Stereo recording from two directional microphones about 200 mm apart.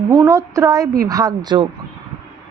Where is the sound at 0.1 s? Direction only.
15° right (ahead or behind).